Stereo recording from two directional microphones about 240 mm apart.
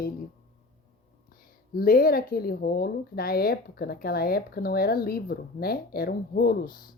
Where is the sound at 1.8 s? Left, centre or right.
Left.